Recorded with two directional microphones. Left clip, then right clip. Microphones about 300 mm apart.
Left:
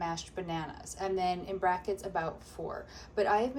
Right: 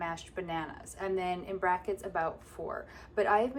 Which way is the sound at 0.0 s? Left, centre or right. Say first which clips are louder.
Left 1 dB; centre.